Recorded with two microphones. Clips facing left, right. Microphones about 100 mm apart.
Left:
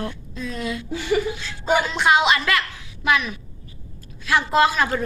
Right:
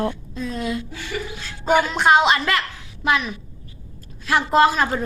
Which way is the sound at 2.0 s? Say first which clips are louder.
Right 1 dB; 40° right (ahead or behind).